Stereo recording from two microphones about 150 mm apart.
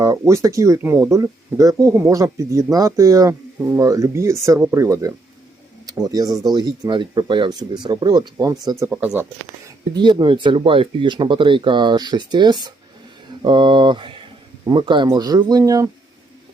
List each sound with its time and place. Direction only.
0.0 s speech: 20° right (ahead or behind)
9.0 s speech: 10° right (ahead or behind)
9.6 s a man's voice: 30° right (ahead or behind)